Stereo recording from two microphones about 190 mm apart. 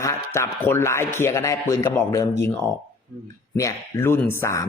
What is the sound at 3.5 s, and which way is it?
Speech, 15° left (ahead or behind).